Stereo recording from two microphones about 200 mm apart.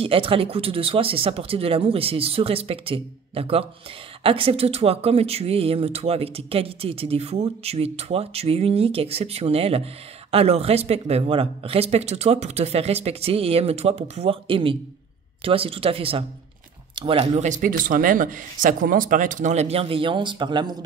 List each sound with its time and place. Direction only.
0.0 s speech: 25° right (ahead or behind)